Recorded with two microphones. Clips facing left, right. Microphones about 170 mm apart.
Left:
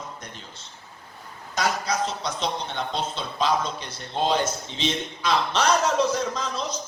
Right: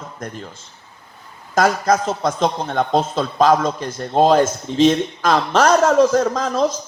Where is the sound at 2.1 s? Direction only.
50° right (ahead or behind).